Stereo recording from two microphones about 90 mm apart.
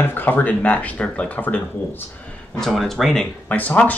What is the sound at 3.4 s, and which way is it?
Speech, 15° left (ahead or behind).